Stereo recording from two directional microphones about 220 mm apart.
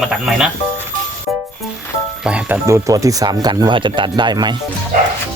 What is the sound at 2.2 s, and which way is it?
Speech, 5° right (ahead or behind).